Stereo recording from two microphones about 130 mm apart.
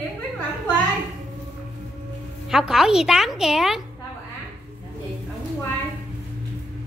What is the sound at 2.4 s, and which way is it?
A woman's voice, 5° right (ahead or behind).